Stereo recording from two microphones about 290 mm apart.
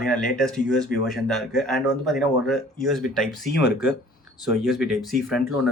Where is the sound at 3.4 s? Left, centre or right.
Left.